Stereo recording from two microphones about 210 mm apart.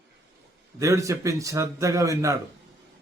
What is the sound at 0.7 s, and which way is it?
A man's voice, 15° right (ahead or behind).